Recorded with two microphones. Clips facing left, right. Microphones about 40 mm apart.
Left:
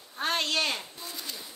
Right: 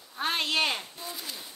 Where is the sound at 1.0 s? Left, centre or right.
Centre.